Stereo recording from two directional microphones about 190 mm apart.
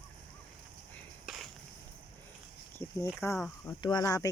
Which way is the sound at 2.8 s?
15° left (ahead or behind).